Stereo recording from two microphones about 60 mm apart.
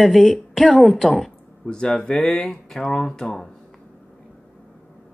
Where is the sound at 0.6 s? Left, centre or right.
Centre.